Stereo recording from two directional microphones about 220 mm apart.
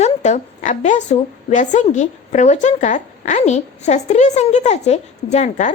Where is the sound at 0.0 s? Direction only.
30° left (ahead or behind).